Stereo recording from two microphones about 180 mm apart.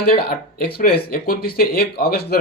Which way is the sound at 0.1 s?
60° left (ahead or behind).